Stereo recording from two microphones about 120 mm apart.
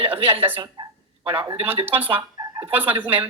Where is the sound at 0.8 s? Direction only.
30° right (ahead or behind).